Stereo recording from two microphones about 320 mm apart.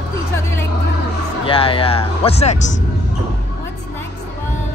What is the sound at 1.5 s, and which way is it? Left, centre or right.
Speech, centre.